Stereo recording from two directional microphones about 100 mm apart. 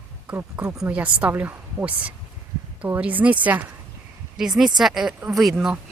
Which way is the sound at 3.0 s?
15° right (ahead or behind).